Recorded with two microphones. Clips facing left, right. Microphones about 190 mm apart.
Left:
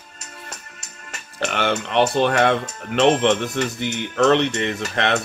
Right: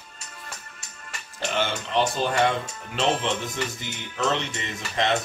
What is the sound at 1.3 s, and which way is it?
Speech, 65° left (ahead or behind).